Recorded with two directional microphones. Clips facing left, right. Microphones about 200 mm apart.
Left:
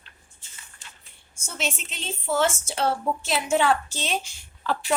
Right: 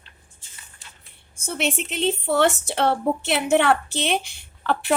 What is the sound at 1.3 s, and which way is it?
Speech, 60° right (ahead or behind).